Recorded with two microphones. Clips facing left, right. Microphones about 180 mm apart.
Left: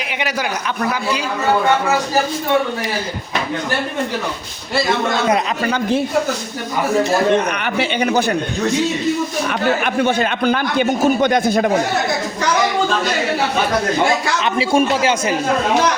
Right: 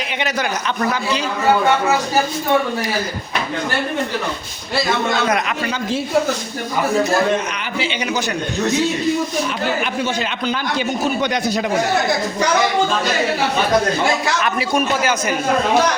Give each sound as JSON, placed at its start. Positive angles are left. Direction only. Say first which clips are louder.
{"t": 0.2, "sound": "a man's voice", "louder": "even", "side_deg": 10}
{"t": 7.6, "sound": "a man's voice", "louder": "left 5 dB", "side_deg": 55}
{"t": 9.5, "sound": "speech", "louder": "left 3 dB", "side_deg": 55}
{"t": 14.4, "sound": "a man's voice", "louder": "left 7 dB", "side_deg": 25}